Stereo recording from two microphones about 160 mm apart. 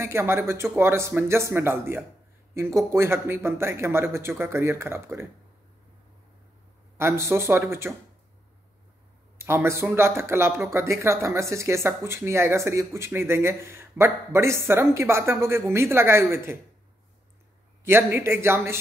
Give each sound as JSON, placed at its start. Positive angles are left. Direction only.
{"t": 0.0, "sound": "speech", "side_deg": -15}
{"t": 7.0, "sound": "speech", "side_deg": -15}
{"t": 9.4, "sound": "speech", "side_deg": -15}
{"t": 17.8, "sound": "speech", "side_deg": -15}